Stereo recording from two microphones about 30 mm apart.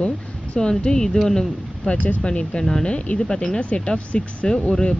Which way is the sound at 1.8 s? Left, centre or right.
Left.